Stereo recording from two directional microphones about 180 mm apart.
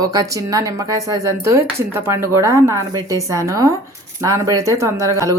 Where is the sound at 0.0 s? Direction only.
20° right (ahead or behind).